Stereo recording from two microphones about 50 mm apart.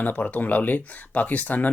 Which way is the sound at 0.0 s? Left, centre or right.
Left.